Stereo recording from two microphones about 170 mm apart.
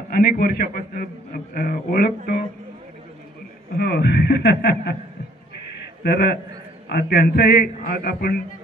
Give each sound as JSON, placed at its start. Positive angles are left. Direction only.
{"t": 0.1, "sound": "a man's voice", "side_deg": 65}
{"t": 3.7, "sound": "speech", "side_deg": 75}
{"t": 6.0, "sound": "a man's voice", "side_deg": 70}